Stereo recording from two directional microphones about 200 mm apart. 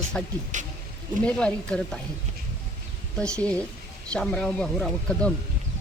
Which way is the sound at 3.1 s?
5° left (ahead or behind).